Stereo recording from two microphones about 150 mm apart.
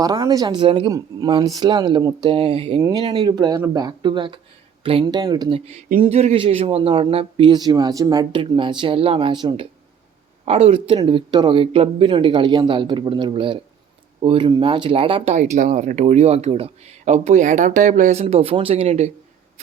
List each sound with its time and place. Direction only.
0.0 s speech: 25° right (ahead or behind)
0.9 s a man's voice: 25° right (ahead or behind)
10.4 s a man's voice: 45° right (ahead or behind)